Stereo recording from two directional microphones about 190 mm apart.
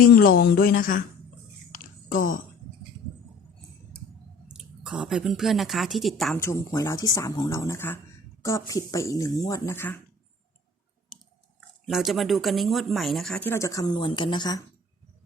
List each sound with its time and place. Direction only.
0.0 s a woman's voice: 50° left (ahead or behind)
1.7 s a sound: 45° left (ahead or behind)
4.5 s speech: 5° right (ahead or behind); by 10.0 s 10° left (ahead or behind)
11.9 s speech: centre (ahead or behind); by 14.6 s 20° left (ahead or behind)